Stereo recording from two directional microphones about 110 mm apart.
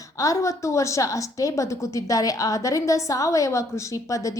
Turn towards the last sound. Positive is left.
turn(degrees=30)  # may be behind; listen again after turning